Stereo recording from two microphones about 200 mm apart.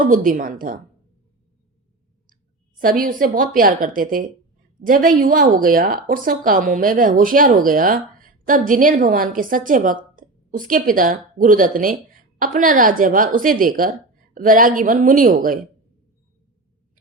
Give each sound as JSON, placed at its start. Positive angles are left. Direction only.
{"t": 0.0, "sound": "a woman's voice", "side_deg": -45}
{"t": 2.8, "sound": "a woman's voice", "side_deg": -45}